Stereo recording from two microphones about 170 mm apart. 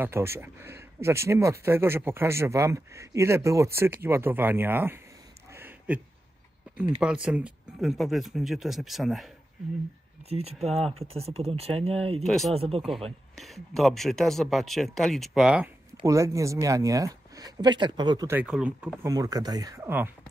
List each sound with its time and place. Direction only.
0.0 s speech: 15° right (ahead or behind)
5.5 s a sound: 15° right (ahead or behind)
6.8 s speech: 5° right (ahead or behind)
10.3 s speech: 35° right (ahead or behind)
12.2 s speech: centre (ahead or behind)
12.5 s speech: 35° right (ahead or behind)
13.4 s speech: centre (ahead or behind)
16.1 s speech: 20° right (ahead or behind)
18.3 s speech: 5° right (ahead or behind)
19.0 s speech: 20° right (ahead or behind)